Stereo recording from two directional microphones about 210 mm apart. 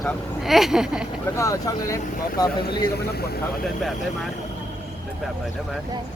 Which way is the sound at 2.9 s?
50° left (ahead or behind).